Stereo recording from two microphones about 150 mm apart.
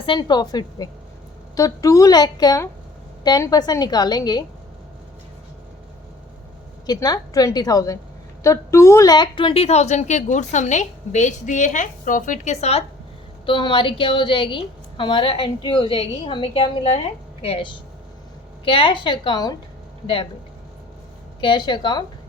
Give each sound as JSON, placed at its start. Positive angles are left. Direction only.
{"t": 0.0, "sound": "a woman's voice", "side_deg": 30}
{"t": 6.8, "sound": "a woman's voice", "side_deg": 25}
{"t": 13.4, "sound": "a woman's voice", "side_deg": 35}
{"t": 21.4, "sound": "a woman's voice", "side_deg": 30}